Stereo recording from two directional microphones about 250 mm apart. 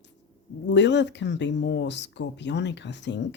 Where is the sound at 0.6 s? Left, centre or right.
Left.